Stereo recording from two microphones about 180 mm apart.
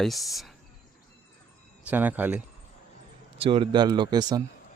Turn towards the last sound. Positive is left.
turn(degrees=-25)  # may be behind; listen again after turning